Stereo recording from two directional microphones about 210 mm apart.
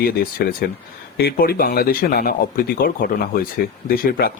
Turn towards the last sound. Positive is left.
turn(degrees=45)  # may be behind; listen again after turning